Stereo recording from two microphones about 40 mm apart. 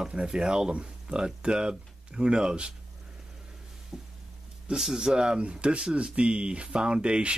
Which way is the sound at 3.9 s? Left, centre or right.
Centre.